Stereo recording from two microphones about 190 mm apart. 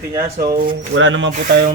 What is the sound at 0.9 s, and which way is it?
Speech, 85° right.